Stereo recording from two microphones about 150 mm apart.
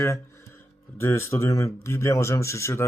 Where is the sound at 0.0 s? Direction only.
15° left (ahead or behind).